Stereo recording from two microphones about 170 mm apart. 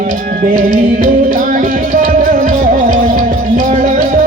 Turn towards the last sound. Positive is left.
turn(degrees=-50)  # may be behind; listen again after turning